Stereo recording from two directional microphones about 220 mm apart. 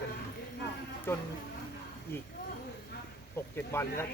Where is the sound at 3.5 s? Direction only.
10° left (ahead or behind).